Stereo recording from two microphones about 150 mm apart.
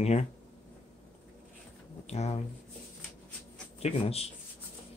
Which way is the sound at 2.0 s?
45° left (ahead or behind).